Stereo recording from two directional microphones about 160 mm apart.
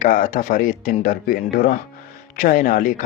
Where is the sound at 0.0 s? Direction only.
50° left (ahead or behind).